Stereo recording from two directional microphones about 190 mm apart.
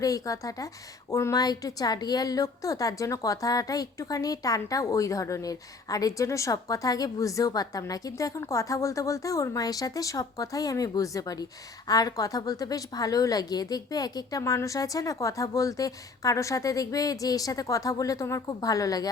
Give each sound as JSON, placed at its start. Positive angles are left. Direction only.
{"t": 0.0, "sound": "a woman's voice", "side_deg": 20}